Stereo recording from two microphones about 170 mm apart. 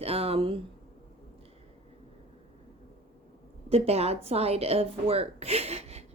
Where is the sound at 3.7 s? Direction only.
35° right (ahead or behind).